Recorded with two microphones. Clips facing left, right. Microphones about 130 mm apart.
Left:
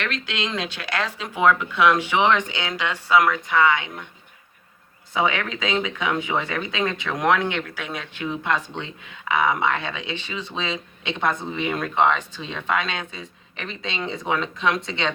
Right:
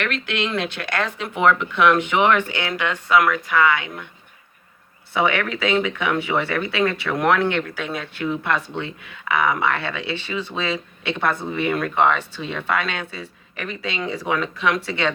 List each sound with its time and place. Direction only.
0.3 s speech: 15° left (ahead or behind)
5.1 s speech: 20° left (ahead or behind)